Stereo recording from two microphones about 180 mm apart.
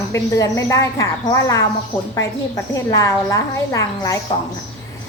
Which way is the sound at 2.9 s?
20° left (ahead or behind).